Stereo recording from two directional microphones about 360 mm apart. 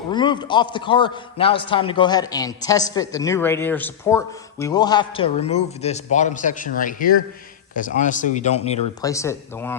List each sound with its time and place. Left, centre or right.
0.1 s a man's voice: centre